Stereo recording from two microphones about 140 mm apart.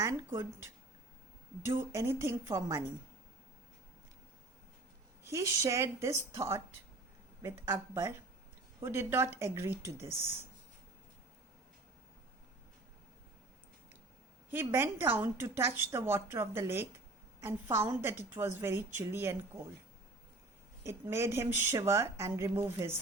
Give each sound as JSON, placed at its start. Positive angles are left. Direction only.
{"t": 0.2, "sound": "a woman's voice", "side_deg": -15}
{"t": 5.2, "sound": "a woman's voice", "side_deg": -20}
{"t": 14.5, "sound": "a woman's voice", "side_deg": -15}
{"t": 20.8, "sound": "speech", "side_deg": -20}